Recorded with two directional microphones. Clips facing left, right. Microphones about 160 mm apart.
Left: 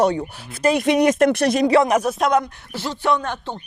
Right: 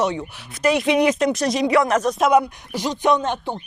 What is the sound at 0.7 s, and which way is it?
Speech, 45° left (ahead or behind).